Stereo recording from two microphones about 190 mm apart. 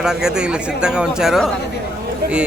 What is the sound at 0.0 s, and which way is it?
Speech, 5° right (ahead or behind).